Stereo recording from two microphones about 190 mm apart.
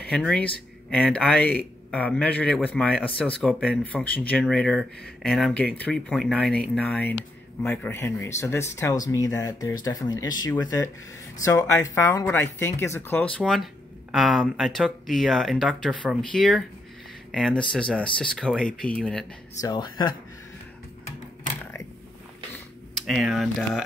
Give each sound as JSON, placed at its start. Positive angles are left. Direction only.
{"t": 0.1, "sound": "speech", "side_deg": 5}
{"t": 19.6, "sound": "speech", "side_deg": 20}
{"t": 22.9, "sound": "speech", "side_deg": 0}